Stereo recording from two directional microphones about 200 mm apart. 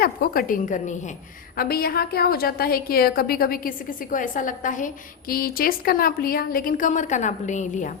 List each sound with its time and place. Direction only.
0.0 s a woman's voice: 45° left (ahead or behind)